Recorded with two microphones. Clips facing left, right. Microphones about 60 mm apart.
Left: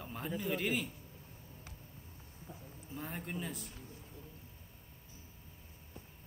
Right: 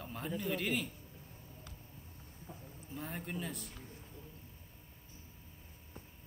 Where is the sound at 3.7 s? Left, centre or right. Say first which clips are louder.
Even; right.